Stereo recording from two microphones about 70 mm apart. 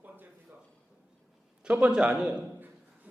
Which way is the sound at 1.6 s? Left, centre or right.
Centre.